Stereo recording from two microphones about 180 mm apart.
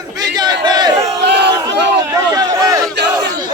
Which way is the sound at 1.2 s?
70° right (ahead or behind).